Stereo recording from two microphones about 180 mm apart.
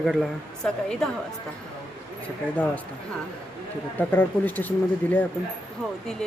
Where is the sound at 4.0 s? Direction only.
10° left (ahead or behind).